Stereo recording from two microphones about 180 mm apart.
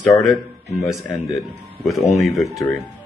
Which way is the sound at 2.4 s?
15° left (ahead or behind).